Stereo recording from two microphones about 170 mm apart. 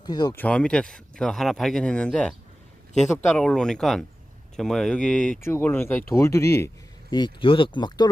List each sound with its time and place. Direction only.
0.0 s speech: 25° left (ahead or behind)
0.3 s speech: 5° left (ahead or behind)
3.3 s speech: 5° left (ahead or behind); by 8.1 s 25° left (ahead or behind)